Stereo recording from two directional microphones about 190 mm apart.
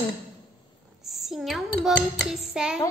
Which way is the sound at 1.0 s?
Centre (ahead or behind).